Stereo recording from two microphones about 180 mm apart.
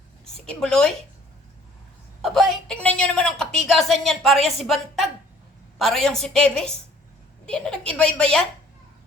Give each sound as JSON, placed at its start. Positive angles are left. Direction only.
{"t": 0.3, "sound": "a woman's voice", "side_deg": 5}
{"t": 2.2, "sound": "a woman's voice", "side_deg": 0}